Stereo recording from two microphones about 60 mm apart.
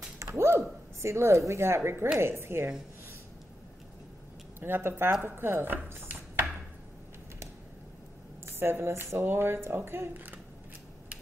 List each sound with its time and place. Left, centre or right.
0.2 s speech: right
4.6 s speech: right
8.5 s speech: right